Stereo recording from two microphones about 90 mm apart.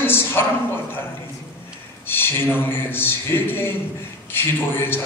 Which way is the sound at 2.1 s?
25° left (ahead or behind).